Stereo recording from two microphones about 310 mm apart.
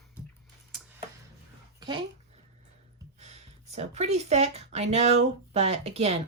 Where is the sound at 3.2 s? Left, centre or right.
Right.